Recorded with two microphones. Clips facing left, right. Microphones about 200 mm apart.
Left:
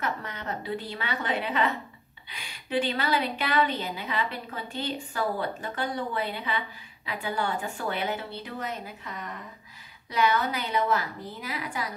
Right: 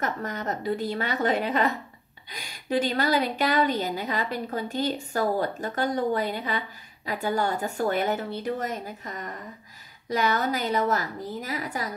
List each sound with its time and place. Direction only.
0.0 s a woman's voice: 40° right (ahead or behind)